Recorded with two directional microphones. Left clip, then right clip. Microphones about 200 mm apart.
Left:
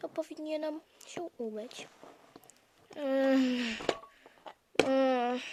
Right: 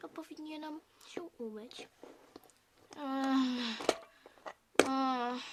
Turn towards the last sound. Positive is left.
turn(degrees=10)  # may be behind; listen again after turning